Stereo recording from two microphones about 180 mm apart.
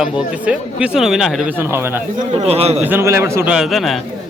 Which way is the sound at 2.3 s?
35° right (ahead or behind).